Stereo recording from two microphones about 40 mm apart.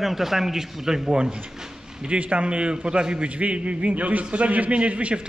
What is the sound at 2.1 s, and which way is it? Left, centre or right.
A man's voice, right.